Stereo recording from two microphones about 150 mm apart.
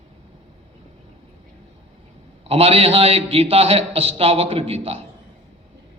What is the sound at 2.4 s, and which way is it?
A man's voice, 40° right (ahead or behind).